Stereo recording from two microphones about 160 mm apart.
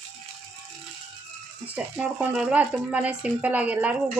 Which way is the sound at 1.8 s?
10° right (ahead or behind).